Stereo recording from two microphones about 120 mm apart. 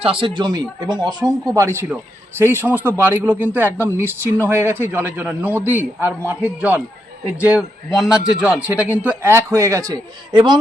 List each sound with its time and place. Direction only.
0.0 s a man's voice: 45° right (ahead or behind); by 10.0 s 25° right (ahead or behind)